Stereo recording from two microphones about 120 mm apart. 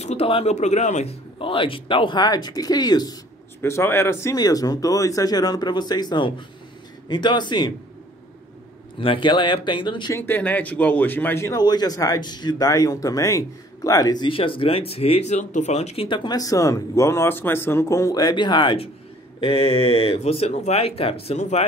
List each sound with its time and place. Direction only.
0.0 s speech: 60° left (ahead or behind); by 1.1 s 75° left (ahead or behind)
1.4 s speech: 45° left (ahead or behind)
3.6 s speech: 20° left (ahead or behind); by 7.7 s 40° left (ahead or behind)
9.0 s speech: 45° left (ahead or behind)
10.1 s speech: 15° left (ahead or behind)
11.6 s speech: 35° left (ahead or behind); by 16.1 s 65° left (ahead or behind)
16.1 s speech: 40° left (ahead or behind)
16.3 s speech: 30° left (ahead or behind)
19.4 s speech: 55° left (ahead or behind)